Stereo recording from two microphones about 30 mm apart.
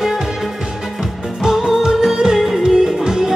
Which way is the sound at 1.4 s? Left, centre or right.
Centre.